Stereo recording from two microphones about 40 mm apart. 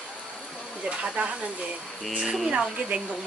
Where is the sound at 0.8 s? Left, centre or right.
Right.